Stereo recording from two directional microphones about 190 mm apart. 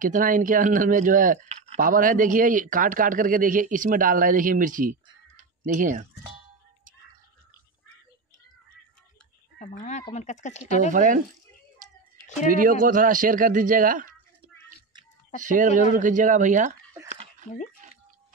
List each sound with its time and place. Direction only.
0.0 s a man's voice: 45° right (ahead or behind)
9.6 s speech: 40° left (ahead or behind)
10.9 s a man's voice: 45° right (ahead or behind)
12.4 s a man's voice: 45° right (ahead or behind)
15.4 s a man's voice: 45° right (ahead or behind)